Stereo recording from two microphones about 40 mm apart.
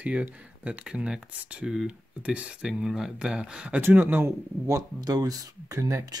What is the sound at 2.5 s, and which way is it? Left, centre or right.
Speech, right.